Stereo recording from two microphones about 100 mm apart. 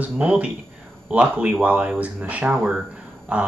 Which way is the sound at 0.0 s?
10° right (ahead or behind).